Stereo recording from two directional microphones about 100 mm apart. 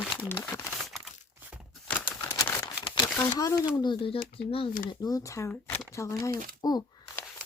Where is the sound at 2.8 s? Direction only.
55° left (ahead or behind).